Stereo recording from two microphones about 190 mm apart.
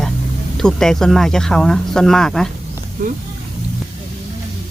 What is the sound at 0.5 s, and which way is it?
Speech, 5° left (ahead or behind).